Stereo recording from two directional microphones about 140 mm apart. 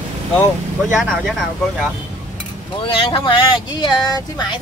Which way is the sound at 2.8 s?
35° left (ahead or behind).